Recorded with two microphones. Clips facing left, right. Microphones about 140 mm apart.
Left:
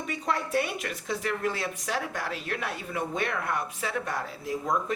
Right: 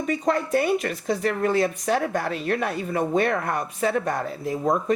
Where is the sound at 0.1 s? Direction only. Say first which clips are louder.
Right 6 dB; 45° right (ahead or behind).